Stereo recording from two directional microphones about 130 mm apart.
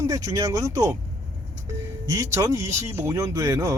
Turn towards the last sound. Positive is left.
turn(degrees=-25)  # may be behind; listen again after turning